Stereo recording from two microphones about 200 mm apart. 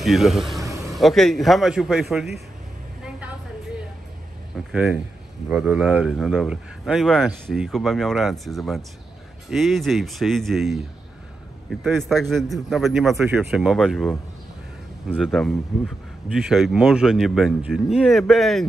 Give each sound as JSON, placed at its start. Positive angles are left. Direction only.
{"t": 0.0, "sound": "speech", "side_deg": 0}
{"t": 0.7, "sound": "vehicle", "side_deg": -15}
{"t": 0.9, "sound": "speech", "side_deg": 0}
{"t": 3.0, "sound": "a sound", "side_deg": -5}
{"t": 4.6, "sound": "speech", "side_deg": -5}
{"t": 12.0, "sound": "speech", "side_deg": 0}